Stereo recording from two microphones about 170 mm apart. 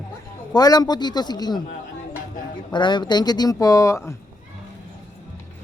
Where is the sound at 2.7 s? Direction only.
25° left (ahead or behind).